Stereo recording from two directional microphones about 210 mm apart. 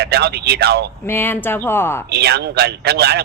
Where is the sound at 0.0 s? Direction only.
50° right (ahead or behind).